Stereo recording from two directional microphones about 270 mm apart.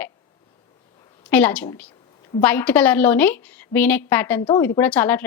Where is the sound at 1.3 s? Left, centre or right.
Centre.